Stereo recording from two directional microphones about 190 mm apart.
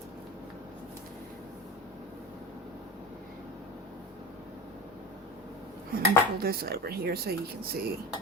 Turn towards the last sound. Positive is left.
turn(degrees=-55)  # may be behind; listen again after turning